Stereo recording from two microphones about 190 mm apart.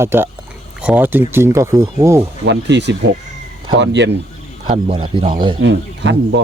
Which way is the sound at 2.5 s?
65° right (ahead or behind).